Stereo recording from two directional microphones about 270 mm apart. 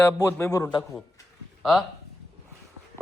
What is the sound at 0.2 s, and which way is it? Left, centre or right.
Speech, centre.